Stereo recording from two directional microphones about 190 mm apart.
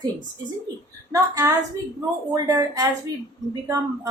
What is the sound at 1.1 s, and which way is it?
A woman's voice, 15° right (ahead or behind).